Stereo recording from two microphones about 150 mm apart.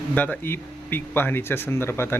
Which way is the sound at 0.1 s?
10° left (ahead or behind).